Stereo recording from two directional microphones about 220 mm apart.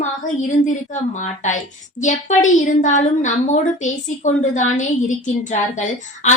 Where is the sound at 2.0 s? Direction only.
35° left (ahead or behind).